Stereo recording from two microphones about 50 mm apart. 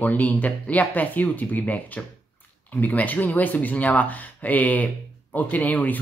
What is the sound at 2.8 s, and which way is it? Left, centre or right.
Speech, left.